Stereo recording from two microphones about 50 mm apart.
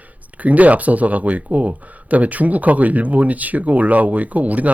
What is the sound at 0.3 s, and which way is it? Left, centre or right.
A man's voice, right.